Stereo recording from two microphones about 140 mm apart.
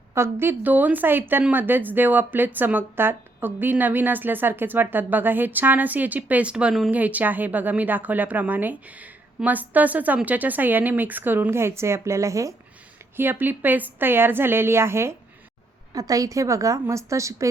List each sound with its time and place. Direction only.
0.1 s a woman's voice: 20° right (ahead or behind)